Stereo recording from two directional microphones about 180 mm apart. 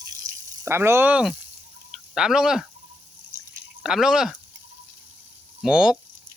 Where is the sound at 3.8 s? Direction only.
5° right (ahead or behind).